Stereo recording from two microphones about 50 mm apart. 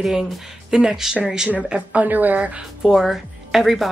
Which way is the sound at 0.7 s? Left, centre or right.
Centre.